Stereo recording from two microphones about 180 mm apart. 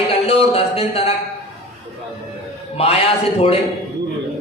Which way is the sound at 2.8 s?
35° left (ahead or behind).